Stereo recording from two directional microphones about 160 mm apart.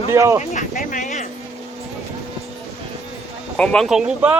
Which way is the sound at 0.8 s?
50° left (ahead or behind).